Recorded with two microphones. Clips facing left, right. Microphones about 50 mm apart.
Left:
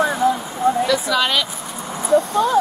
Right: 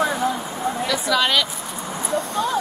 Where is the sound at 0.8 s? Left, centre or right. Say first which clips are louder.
Left 2 dB; centre.